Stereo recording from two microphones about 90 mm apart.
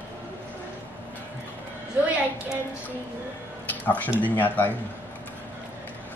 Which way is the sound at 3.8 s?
20° left (ahead or behind).